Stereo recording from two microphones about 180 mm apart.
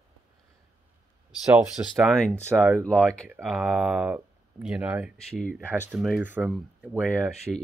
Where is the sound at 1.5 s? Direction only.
Centre (ahead or behind).